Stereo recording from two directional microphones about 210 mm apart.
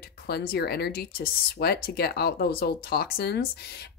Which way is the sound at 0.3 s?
50° left (ahead or behind).